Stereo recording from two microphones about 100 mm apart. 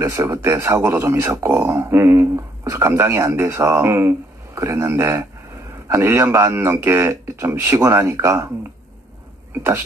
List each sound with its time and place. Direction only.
0.0 s a man's voice: 30° right (ahead or behind)
9.6 s a man's voice: 25° right (ahead or behind)